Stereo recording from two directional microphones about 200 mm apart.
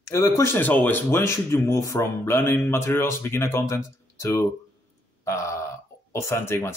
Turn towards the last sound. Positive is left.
turn(degrees=10)  # may be behind; listen again after turning